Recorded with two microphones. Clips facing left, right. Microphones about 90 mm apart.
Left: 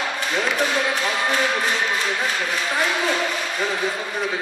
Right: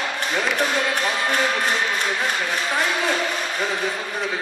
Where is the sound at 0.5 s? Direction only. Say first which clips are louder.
Even; 15° left (ahead or behind).